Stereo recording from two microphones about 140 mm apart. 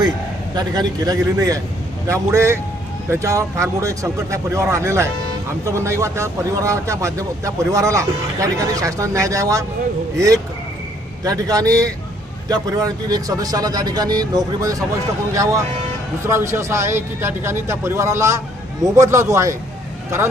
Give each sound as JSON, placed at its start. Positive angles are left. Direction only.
{"t": 0.5, "sound": "a man's voice", "side_deg": -30}